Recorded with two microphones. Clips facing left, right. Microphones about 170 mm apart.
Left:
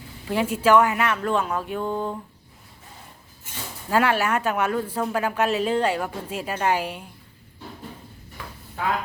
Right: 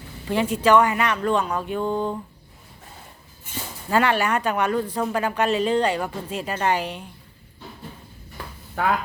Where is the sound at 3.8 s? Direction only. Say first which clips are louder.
Right 1 dB; 5° left (ahead or behind).